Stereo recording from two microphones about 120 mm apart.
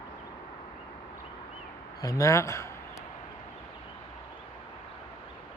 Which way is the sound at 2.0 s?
30° left (ahead or behind).